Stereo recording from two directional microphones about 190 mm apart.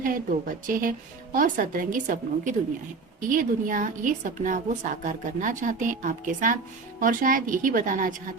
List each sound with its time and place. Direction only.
0.0 s a woman's voice: 45° right (ahead or behind)